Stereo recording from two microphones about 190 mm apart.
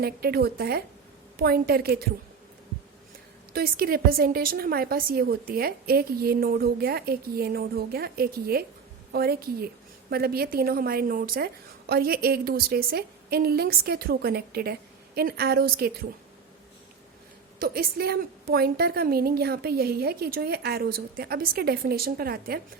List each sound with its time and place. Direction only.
0.0 s a woman's voice: 55° right (ahead or behind)
3.5 s a woman's voice: 50° right (ahead or behind)
17.6 s a woman's voice: 55° right (ahead or behind)